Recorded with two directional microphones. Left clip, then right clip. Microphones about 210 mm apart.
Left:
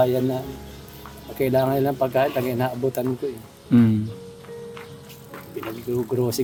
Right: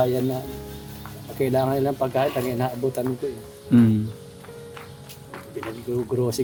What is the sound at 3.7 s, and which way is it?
Speech, 10° left (ahead or behind).